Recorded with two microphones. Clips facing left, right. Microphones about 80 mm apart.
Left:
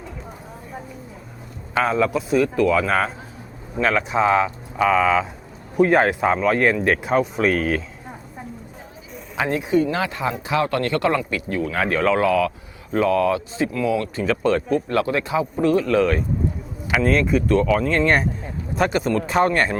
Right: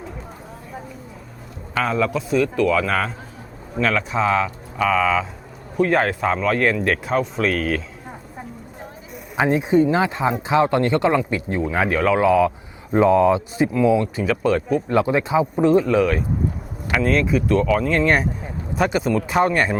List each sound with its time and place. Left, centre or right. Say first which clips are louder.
1.7 s speech: left 1 dB; centre
9.4 s speech: right 3 dB; right
11.9 s speech: left 1 dB; centre
12.2 s speech: right 3 dB; right
14.2 s speech: even; centre
14.9 s speech: right 5 dB; centre
16.0 s speech: even; centre